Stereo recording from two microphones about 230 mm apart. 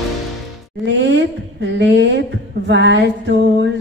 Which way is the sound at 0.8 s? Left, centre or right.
Right.